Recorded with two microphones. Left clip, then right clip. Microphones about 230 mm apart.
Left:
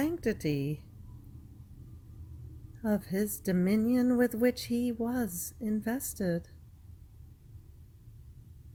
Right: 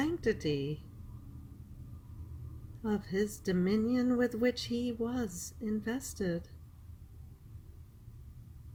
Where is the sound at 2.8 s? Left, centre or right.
Left.